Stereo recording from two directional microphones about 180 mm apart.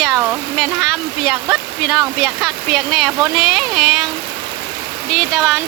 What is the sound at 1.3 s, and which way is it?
Speech, 5° right (ahead or behind).